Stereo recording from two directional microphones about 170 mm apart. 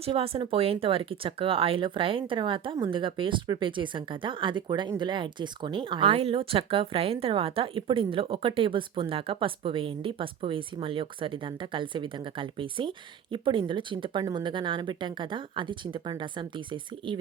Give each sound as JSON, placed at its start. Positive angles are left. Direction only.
{"t": 0.0, "sound": "speech", "side_deg": -35}